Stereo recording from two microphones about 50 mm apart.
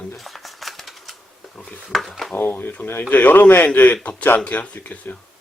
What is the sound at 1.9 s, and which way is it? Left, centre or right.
Speech, centre.